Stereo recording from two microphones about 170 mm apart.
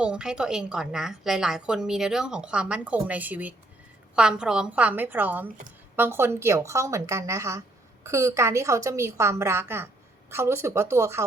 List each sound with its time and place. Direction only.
0.0 s a woman's voice: 5° right (ahead or behind)